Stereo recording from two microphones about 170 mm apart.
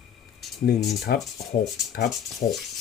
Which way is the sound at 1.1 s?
65° left (ahead or behind).